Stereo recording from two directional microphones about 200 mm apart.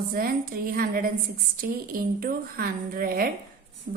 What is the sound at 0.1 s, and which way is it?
A woman's voice, 45° right (ahead or behind).